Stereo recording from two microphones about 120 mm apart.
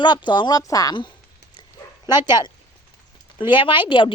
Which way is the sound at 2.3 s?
35° left (ahead or behind).